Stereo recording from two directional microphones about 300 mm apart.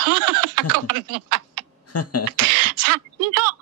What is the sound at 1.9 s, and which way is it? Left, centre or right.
Speech, left.